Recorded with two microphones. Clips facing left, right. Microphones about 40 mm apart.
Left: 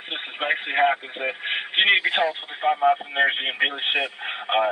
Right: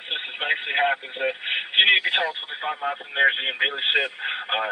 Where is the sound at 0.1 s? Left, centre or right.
Centre.